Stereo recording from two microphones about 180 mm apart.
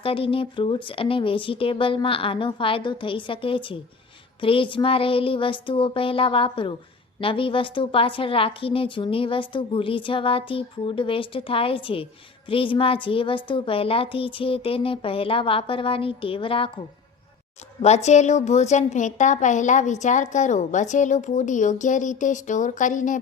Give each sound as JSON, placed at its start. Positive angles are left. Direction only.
{"t": 0.0, "sound": "a woman's voice", "side_deg": 30}
{"t": 17.8, "sound": "a woman's voice", "side_deg": 40}